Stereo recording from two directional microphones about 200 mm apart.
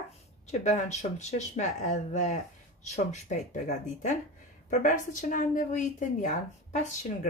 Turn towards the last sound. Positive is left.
turn(degrees=35)  # may be behind; listen again after turning